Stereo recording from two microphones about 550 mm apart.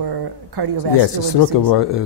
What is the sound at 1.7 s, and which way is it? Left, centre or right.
Speech, left.